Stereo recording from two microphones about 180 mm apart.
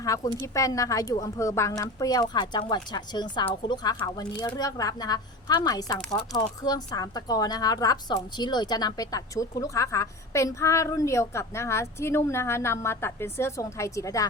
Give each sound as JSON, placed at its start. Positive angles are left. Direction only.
{"t": 0.0, "sound": "a woman's voice", "side_deg": 20}